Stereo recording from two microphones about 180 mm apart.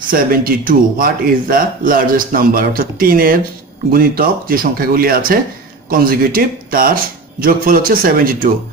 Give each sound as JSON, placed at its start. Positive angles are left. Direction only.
{"t": 0.1, "sound": "speech", "side_deg": -55}